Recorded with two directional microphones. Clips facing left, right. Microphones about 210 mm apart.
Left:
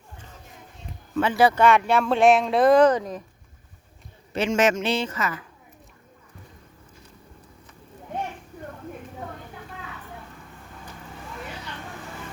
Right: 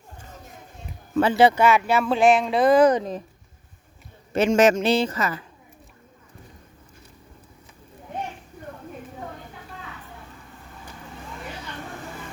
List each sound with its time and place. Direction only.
1.1 s speech: 35° right (ahead or behind)
1.5 s speech: 5° right (ahead or behind)
2.9 s speech: 25° right (ahead or behind)
4.3 s a man's voice: 40° right (ahead or behind)